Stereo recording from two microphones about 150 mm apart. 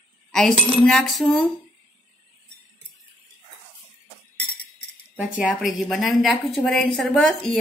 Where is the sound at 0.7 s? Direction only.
5° left (ahead or behind).